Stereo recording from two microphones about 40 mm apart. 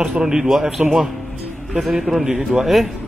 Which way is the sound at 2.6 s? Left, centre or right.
Centre.